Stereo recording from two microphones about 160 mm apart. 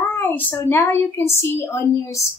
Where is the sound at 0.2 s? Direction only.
15° left (ahead or behind).